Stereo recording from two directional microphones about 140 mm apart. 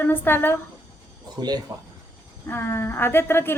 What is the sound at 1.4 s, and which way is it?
Speech, 30° right (ahead or behind).